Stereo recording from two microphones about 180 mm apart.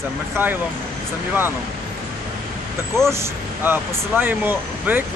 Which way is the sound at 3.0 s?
15° right (ahead or behind).